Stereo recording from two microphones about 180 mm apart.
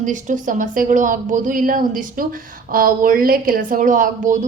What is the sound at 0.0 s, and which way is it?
A woman's voice, 45° right (ahead or behind).